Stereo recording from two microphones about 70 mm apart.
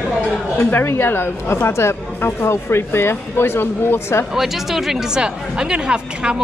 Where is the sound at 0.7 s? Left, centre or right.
Left.